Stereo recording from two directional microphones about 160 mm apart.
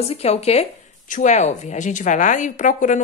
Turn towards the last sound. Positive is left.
turn(degrees=50)  # may be behind; listen again after turning